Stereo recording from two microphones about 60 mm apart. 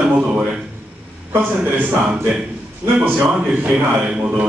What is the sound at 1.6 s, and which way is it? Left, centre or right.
Speech, right.